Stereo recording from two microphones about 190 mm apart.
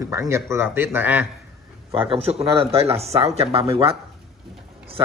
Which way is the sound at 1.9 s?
30° right (ahead or behind).